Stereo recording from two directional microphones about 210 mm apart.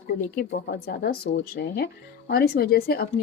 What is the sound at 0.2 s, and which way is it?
Speech, 45° left (ahead or behind).